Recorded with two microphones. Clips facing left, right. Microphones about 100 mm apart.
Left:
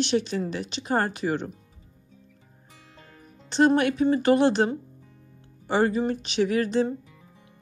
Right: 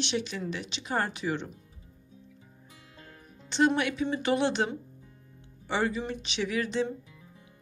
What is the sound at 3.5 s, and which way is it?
A woman's voice, 45° left (ahead or behind).